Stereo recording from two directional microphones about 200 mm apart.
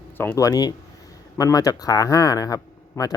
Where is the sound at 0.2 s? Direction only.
15° left (ahead or behind).